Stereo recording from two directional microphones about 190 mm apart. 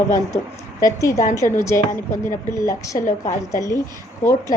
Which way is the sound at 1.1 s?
40° left (ahead or behind).